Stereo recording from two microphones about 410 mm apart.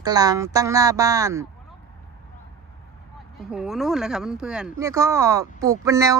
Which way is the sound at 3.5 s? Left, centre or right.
Centre.